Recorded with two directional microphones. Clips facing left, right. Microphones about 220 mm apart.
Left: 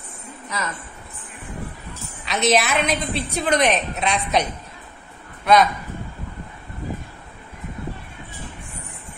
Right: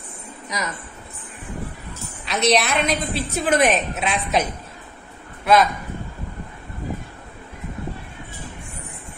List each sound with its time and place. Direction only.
0.5 s speech: 15° right (ahead or behind)
2.2 s a woman's voice: centre (ahead or behind)